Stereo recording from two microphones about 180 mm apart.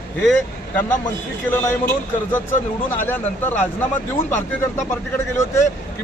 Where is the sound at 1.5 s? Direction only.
10° left (ahead or behind).